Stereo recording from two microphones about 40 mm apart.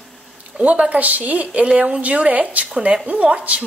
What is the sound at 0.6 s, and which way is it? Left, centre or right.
A woman's voice, right.